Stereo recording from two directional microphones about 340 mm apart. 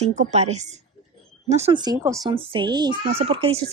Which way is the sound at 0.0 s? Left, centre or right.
Centre.